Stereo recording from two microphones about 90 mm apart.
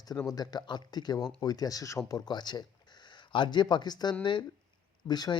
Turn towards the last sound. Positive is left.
turn(degrees=50)  # may be behind; listen again after turning